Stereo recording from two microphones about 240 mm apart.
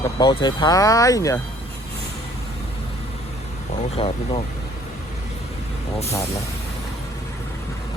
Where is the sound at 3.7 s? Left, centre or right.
Left.